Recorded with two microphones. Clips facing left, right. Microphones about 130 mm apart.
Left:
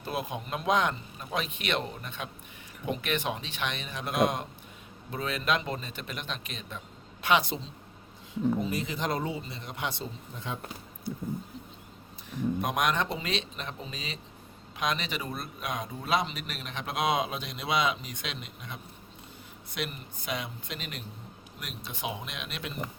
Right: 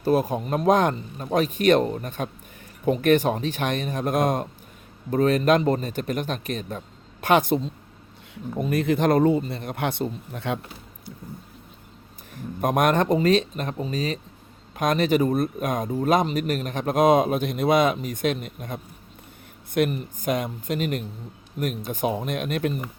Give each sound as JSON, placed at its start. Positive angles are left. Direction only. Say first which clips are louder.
{"t": 0.0, "sound": "speech", "louder": "right 12 dB", "side_deg": -40}
{"t": 12.3, "sound": "speech", "louder": "right 5 dB", "side_deg": -50}